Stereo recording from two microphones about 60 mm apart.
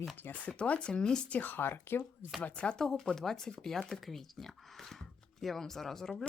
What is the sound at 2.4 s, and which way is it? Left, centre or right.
Speech, left.